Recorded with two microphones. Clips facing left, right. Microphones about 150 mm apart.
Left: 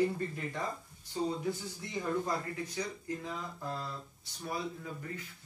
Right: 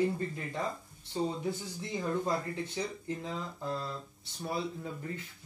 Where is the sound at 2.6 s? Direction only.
25° right (ahead or behind).